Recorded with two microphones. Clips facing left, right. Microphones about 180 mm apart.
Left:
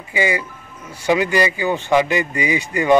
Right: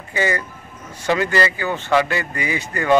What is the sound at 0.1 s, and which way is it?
Speech, 10° left (ahead or behind).